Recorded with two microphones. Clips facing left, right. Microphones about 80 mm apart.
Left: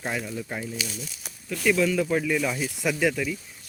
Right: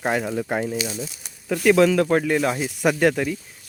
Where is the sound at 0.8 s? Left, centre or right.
Right.